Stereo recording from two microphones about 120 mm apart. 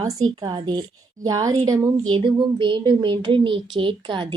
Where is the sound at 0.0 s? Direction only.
35° right (ahead or behind).